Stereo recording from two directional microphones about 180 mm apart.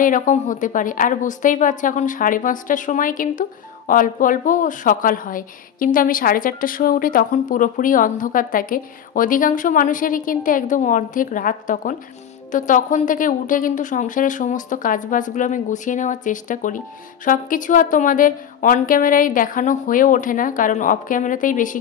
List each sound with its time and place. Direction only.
0.0 s a woman's voice: 45° left (ahead or behind)